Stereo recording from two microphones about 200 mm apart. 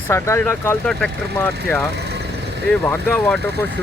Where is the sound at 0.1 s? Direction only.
15° left (ahead or behind).